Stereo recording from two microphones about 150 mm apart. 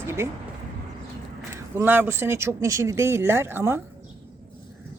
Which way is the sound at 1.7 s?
15° right (ahead or behind).